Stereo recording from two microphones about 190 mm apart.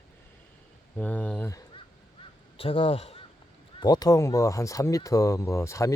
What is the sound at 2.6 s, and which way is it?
Speech, 30° left (ahead or behind).